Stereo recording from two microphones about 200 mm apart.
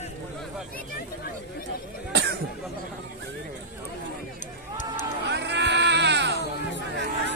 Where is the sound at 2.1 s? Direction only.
55° right (ahead or behind).